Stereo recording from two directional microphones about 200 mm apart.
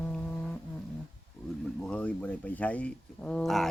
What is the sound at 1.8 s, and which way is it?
Speech, 5° left (ahead or behind).